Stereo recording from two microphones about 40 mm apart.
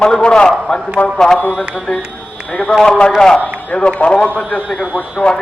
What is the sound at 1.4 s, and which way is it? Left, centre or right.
A man's voice, left.